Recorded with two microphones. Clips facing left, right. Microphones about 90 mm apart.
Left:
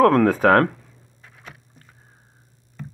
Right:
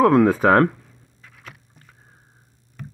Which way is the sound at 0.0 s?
10° right (ahead or behind).